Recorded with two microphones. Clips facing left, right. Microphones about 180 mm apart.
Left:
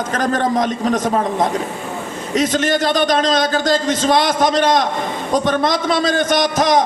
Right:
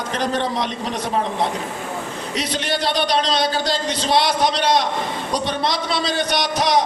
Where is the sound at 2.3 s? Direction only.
45° left (ahead or behind).